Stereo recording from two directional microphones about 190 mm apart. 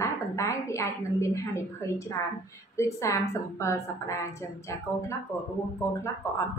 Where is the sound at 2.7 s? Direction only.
15° left (ahead or behind).